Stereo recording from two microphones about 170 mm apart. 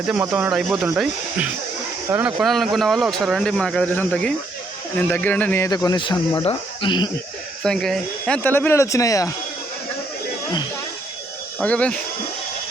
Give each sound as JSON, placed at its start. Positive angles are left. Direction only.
{"t": 0.1, "sound": "speech", "side_deg": -5}
{"t": 2.0, "sound": "speech", "side_deg": -10}
{"t": 2.4, "sound": "speech", "side_deg": 0}
{"t": 7.6, "sound": "speech", "side_deg": 5}
{"t": 11.6, "sound": "speech", "side_deg": 5}